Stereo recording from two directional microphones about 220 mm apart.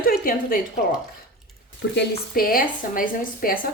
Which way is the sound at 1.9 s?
45° left (ahead or behind).